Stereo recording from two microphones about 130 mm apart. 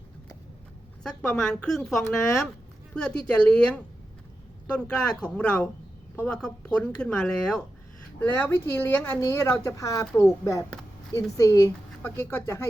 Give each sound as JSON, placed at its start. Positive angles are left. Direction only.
{"t": 1.0, "sound": "a woman's voice", "side_deg": 5}